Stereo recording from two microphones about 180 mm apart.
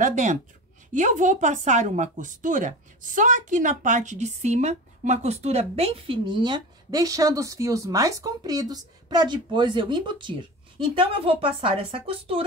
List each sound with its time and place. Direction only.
0.0 s speech: 45° right (ahead or behind)